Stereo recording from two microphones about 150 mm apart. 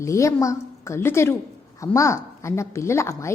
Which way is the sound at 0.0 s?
20° left (ahead or behind).